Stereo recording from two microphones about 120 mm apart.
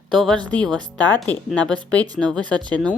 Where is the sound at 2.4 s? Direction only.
40° right (ahead or behind).